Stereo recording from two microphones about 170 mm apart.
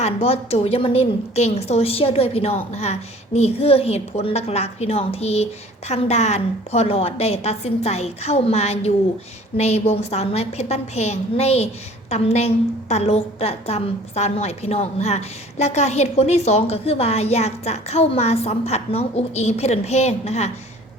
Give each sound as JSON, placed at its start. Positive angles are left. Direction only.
{"t": 0.0, "sound": "a woman's voice", "side_deg": 35}